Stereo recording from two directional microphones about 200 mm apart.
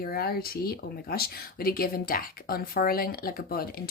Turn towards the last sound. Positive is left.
turn(degrees=45)  # may be behind; listen again after turning